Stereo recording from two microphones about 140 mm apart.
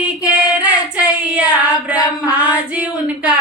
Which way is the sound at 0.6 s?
10° right (ahead or behind).